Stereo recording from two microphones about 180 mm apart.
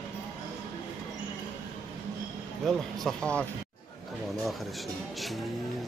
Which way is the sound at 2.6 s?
5° left (ahead or behind).